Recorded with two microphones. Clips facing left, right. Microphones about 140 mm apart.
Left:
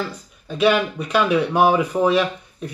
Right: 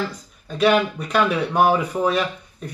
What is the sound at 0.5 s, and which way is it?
Speech, 5° left (ahead or behind).